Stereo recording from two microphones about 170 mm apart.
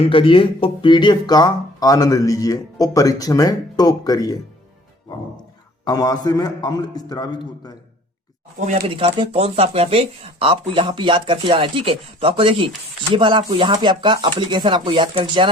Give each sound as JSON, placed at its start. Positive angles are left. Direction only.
{"t": 0.0, "sound": "speech", "side_deg": 30}
{"t": 5.8, "sound": "speech", "side_deg": 20}
{"t": 8.9, "sound": "speech", "side_deg": -30}